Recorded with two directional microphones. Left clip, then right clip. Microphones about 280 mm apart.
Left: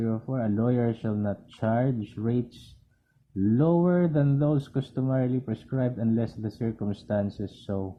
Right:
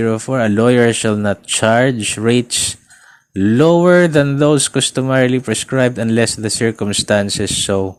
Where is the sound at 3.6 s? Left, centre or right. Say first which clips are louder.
Right 15 dB; right.